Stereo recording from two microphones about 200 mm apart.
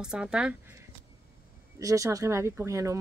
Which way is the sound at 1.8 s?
15° right (ahead or behind).